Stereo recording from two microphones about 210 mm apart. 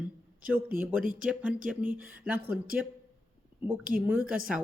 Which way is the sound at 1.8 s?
40° right (ahead or behind).